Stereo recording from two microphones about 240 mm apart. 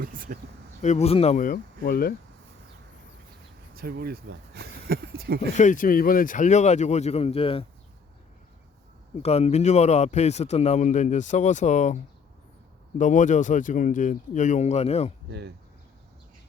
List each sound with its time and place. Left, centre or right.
0.0 s speech: right
0.8 s speech: left
3.8 s speech: right
5.5 s speech: left
9.2 s speech: left
13.0 s speech: left
15.3 s speech: right